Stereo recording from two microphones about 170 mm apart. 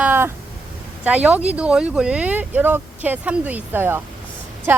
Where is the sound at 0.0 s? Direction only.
10° right (ahead or behind).